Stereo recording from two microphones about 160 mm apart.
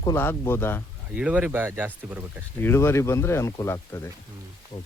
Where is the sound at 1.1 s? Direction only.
10° right (ahead or behind).